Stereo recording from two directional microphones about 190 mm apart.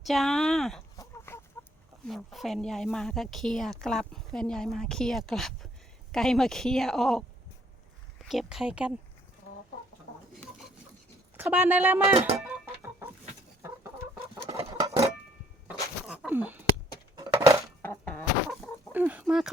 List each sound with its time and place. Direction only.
0.0 s a woman's voice: centre (ahead or behind)
0.9 s chicken: 15° left (ahead or behind)
2.0 s a woman's voice: centre (ahead or behind)
8.3 s a woman's voice: centre (ahead or behind)
11.3 s speech: 10° right (ahead or behind)
14.4 s a sound: 20° right (ahead or behind)
15.6 s a sound: 5° right (ahead or behind)
17.8 s chicken: 10° left (ahead or behind)
18.9 s speech: 10° right (ahead or behind)